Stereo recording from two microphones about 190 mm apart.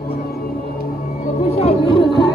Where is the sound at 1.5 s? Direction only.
30° left (ahead or behind).